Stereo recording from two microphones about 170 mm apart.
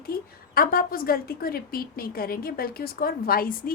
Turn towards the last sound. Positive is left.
turn(degrees=60)  # may be behind; listen again after turning